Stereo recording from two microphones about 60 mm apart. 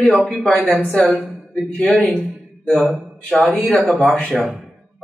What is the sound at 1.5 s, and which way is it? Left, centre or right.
Speech, centre.